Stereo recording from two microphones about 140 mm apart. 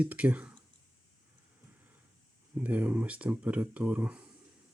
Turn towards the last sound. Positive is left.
turn(degrees=-10)  # may be behind; listen again after turning